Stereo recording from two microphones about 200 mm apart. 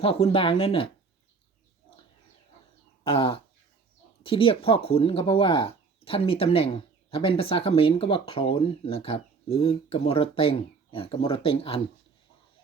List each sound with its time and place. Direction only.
0.0 s speech: 30° left (ahead or behind)
3.0 s a sound: 25° left (ahead or behind)
4.2 s speech: 25° left (ahead or behind)